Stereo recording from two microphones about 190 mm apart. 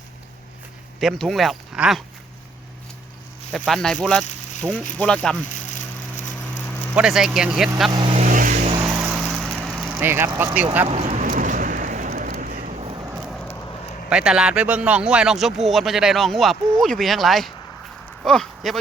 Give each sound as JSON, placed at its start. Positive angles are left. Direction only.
{"t": 0.9, "sound": "a man's voice", "side_deg": 0}
{"t": 3.5, "sound": "a man's voice", "side_deg": 0}
{"t": 6.9, "sound": "a man's voice", "side_deg": -5}
{"t": 7.9, "sound": "speech", "side_deg": -25}
{"t": 8.2, "sound": "vehicle", "side_deg": -45}
{"t": 8.8, "sound": "vehicle", "side_deg": -5}
{"t": 9.8, "sound": "speech", "side_deg": -10}
{"t": 10.8, "sound": "a sound", "side_deg": -35}
{"t": 13.2, "sound": "a sound", "side_deg": 0}
{"t": 14.1, "sound": "a man's voice", "side_deg": -5}